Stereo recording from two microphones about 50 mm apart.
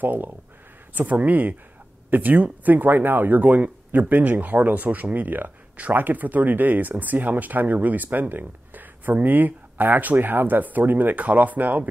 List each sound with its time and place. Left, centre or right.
0.0 s speech: right